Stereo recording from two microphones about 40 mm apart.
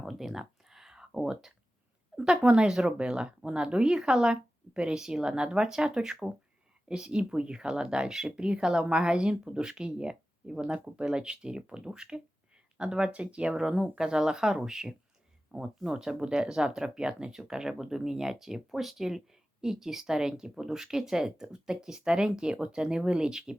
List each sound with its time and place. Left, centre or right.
0.0 s a sound: centre
2.4 s speech: right
2.6 s speech: centre
13.6 s speech: centre